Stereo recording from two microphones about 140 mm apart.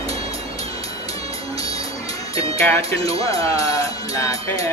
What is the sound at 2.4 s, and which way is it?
Speech, 45° right (ahead or behind).